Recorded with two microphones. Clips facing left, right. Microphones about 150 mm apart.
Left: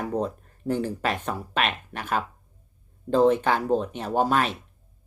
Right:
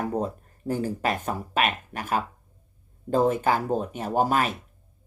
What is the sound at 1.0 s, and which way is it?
Speech, 45° right (ahead or behind).